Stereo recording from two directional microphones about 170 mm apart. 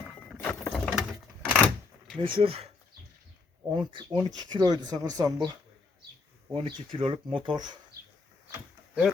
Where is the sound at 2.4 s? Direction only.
35° right (ahead or behind).